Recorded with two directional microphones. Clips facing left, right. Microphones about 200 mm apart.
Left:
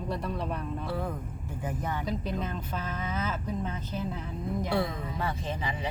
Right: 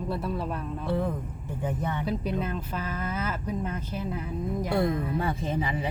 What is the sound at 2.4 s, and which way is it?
Speech, 5° right (ahead or behind).